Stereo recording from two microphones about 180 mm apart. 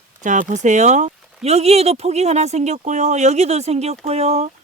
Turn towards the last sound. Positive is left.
turn(degrees=-35)  # may be behind; listen again after turning